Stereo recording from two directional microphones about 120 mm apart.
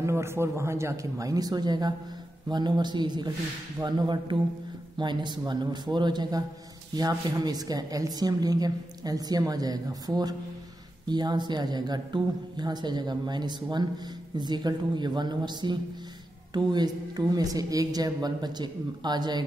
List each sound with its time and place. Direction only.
0.0 s a woman's voice: 20° right (ahead or behind); by 19.4 s 35° right (ahead or behind)